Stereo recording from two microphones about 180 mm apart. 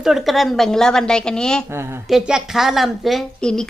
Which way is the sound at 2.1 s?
5° right (ahead or behind).